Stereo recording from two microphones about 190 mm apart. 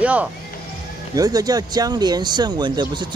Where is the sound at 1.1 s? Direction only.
20° right (ahead or behind).